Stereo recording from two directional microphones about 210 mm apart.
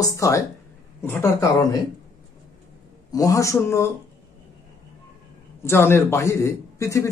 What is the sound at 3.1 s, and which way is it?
Speech, 15° left (ahead or behind).